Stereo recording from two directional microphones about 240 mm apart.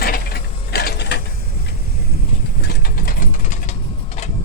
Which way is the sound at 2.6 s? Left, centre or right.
Left.